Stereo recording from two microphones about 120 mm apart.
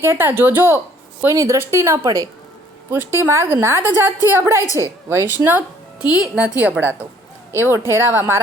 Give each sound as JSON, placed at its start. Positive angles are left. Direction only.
{"t": 0.0, "sound": "a woman's voice", "side_deg": -20}
{"t": 6.0, "sound": "a woman's voice", "side_deg": 35}
{"t": 6.2, "sound": "a woman's voice", "side_deg": -10}